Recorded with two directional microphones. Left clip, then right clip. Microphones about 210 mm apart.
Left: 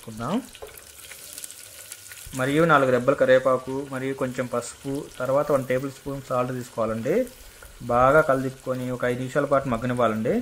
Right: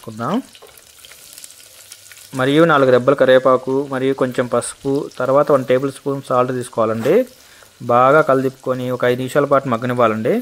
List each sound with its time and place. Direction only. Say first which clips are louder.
2.3 s speech: right 6 dB; 40° right (ahead or behind)